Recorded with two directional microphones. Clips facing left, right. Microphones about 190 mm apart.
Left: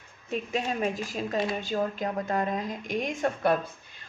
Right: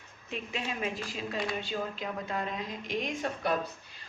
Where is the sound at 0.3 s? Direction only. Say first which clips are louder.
Left 7 dB; 40° left (ahead or behind).